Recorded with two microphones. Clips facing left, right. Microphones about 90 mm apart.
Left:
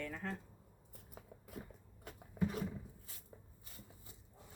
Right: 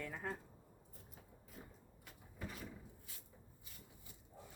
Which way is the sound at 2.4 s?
60° left (ahead or behind).